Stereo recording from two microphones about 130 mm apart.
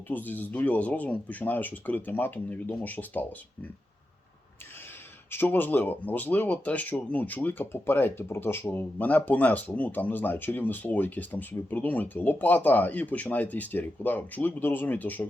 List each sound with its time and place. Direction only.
0.1 s speech: 15° left (ahead or behind)
5.3 s speech: 15° left (ahead or behind)